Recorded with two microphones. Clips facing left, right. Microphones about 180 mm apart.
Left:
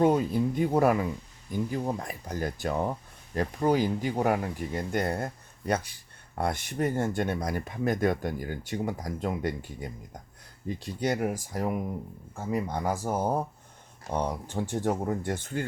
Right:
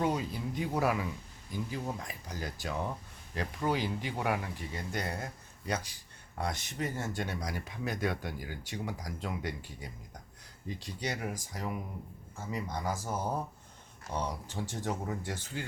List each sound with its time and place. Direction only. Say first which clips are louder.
0.0 s speech: left 9 dB; 50° left (ahead or behind)